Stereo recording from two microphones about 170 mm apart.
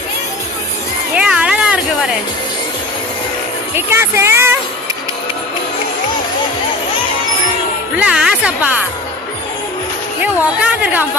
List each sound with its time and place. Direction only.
1.1 s a sound: 5° right (ahead or behind)
3.8 s speech: 15° right (ahead or behind)
7.9 s speech: 5° right (ahead or behind)
10.4 s speech: 5° right (ahead or behind)